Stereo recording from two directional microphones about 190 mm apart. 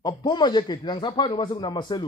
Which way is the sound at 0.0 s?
25° left (ahead or behind).